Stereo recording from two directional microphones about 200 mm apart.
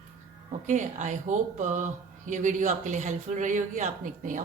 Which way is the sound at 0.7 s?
40° right (ahead or behind).